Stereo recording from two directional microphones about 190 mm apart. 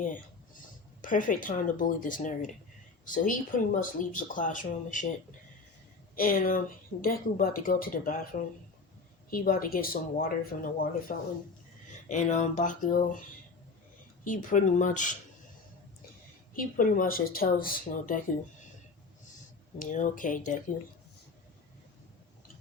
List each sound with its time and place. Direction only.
1.0 s speech: 45° left (ahead or behind)
6.1 s speech: 50° left (ahead or behind)
12.0 s a sound: 40° left (ahead or behind)
14.3 s a sound: 40° left (ahead or behind)
16.6 s speech: 45° left (ahead or behind)
19.8 s speech: 45° left (ahead or behind)